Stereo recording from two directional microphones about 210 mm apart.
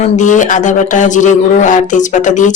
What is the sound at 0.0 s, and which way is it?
Speech, 35° left (ahead or behind).